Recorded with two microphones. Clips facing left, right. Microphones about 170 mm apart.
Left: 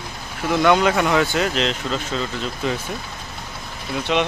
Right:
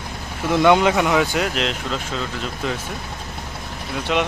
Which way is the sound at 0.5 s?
20° right (ahead or behind).